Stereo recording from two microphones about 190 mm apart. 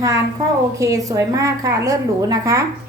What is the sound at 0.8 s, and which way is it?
A woman's voice, 15° right (ahead or behind).